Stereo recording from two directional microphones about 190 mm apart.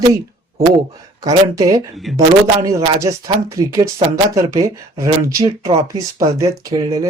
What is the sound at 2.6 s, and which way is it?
Speech, 15° right (ahead or behind).